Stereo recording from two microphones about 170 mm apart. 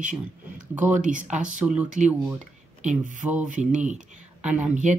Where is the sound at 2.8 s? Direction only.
45° right (ahead or behind).